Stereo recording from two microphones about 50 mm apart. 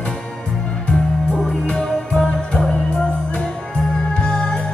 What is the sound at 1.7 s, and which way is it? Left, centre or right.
Music, centre.